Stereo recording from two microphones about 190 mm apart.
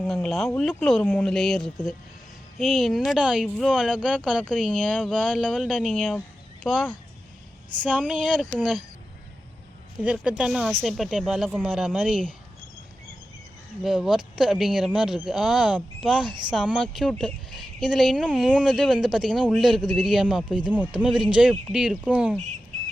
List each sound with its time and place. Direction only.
0.0 s speech: centre (ahead or behind)
10.0 s speech: 5° right (ahead or behind)
13.8 s speech: centre (ahead or behind)
16.2 s speech: 25° right (ahead or behind)
16.5 s speech: 5° right (ahead or behind)